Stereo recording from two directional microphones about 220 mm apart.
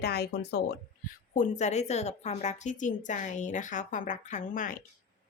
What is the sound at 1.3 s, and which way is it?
Speech, 35° left (ahead or behind).